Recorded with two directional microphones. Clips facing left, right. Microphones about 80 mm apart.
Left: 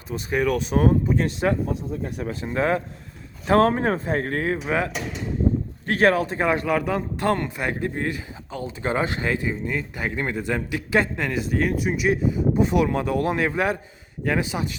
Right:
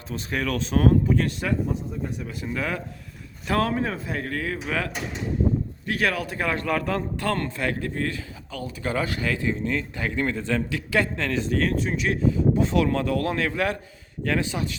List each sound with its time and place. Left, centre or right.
0.1 s speech: centre
2.2 s speech: left
4.5 s speech: left
5.8 s speech: left; by 14.8 s centre